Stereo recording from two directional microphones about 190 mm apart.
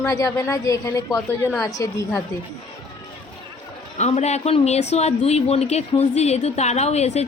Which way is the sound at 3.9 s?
35° left (ahead or behind).